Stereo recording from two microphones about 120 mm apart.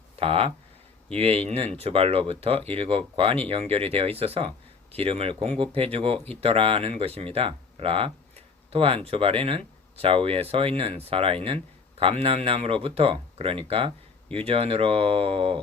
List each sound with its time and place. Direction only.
0.2 s speech: 50° right (ahead or behind)